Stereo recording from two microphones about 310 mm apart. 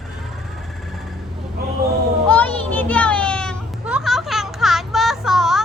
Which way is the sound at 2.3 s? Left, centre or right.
Centre.